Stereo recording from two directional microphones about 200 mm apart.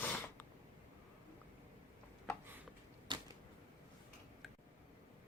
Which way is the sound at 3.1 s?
25° right (ahead or behind).